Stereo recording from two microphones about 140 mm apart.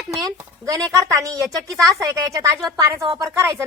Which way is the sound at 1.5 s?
Centre (ahead or behind).